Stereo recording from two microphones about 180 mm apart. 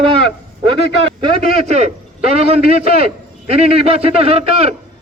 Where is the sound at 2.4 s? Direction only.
35° right (ahead or behind).